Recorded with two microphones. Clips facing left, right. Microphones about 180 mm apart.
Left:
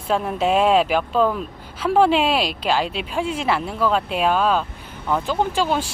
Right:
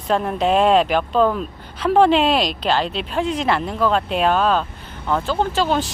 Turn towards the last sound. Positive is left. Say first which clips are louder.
# right 1 dB
turn(degrees=10)  # may be behind; listen again after turning